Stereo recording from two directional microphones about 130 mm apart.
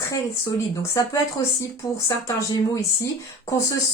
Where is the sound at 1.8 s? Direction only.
25° left (ahead or behind).